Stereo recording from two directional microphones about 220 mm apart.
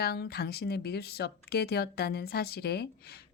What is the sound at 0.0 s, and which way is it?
Speech, 45° left (ahead or behind).